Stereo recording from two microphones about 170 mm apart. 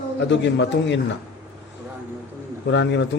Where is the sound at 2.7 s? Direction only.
90° left.